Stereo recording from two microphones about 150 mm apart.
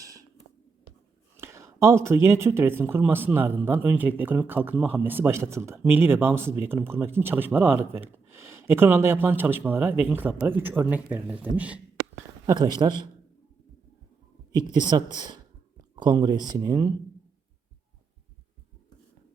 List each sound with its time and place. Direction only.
0.0 s a sound: 20° right (ahead or behind)
1.4 s speech: 20° right (ahead or behind)
12.5 s speech: 30° right (ahead or behind)
14.5 s speech: 30° right (ahead or behind)